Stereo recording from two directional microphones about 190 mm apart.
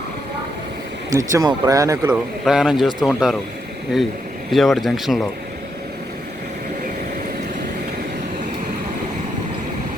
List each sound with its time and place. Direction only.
1.1 s speech: 20° right (ahead or behind)
2.4 s speech: 5° right (ahead or behind)
4.5 s speech: centre (ahead or behind)